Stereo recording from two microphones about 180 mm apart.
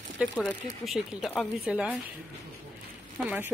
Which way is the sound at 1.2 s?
10° left (ahead or behind).